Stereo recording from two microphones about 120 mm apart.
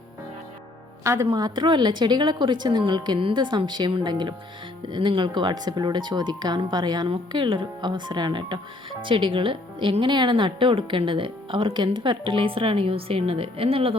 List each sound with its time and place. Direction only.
1.0 s a woman's voice: 25° right (ahead or behind); by 13.9 s 50° right (ahead or behind)